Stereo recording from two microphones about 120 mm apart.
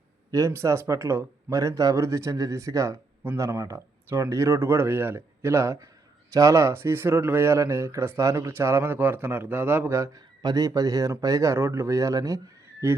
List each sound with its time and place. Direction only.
0.3 s speech: 25° right (ahead or behind)